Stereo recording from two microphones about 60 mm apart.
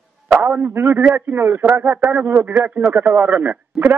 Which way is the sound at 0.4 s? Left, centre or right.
Right.